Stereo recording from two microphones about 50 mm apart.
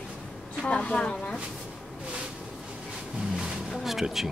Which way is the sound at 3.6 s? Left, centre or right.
Centre.